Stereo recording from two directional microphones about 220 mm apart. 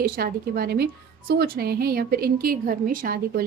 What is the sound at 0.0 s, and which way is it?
A woman's voice, 45° right (ahead or behind).